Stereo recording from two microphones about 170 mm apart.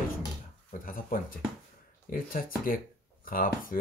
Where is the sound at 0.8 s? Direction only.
55° left (ahead or behind).